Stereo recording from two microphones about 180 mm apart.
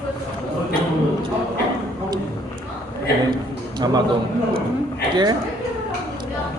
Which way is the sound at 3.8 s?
20° right (ahead or behind).